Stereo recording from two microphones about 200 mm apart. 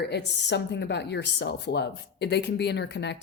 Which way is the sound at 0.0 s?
55° left (ahead or behind).